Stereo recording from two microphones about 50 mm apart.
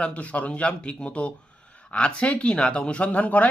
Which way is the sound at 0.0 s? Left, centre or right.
Left.